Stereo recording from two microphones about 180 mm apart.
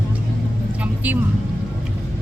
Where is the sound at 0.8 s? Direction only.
10° right (ahead or behind).